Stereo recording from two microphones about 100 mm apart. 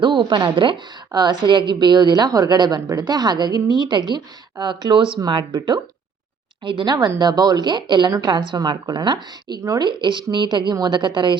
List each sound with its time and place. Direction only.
0.0 s a woman's voice: 50° right (ahead or behind)